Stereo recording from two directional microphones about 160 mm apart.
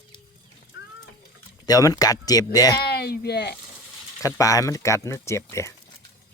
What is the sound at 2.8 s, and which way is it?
Speech, 80° left.